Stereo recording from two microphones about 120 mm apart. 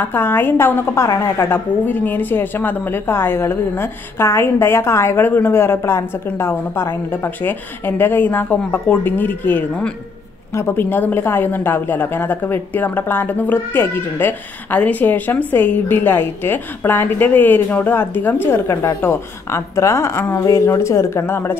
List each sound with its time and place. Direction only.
0.0 s a woman's voice: 15° left (ahead or behind)